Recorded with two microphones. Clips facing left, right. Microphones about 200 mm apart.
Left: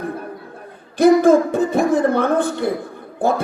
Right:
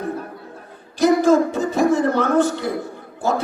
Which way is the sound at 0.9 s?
55° left (ahead or behind).